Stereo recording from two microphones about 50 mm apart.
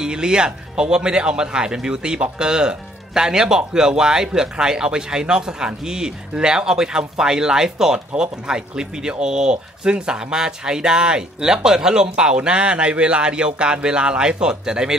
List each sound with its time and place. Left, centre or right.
0.0 s speech: centre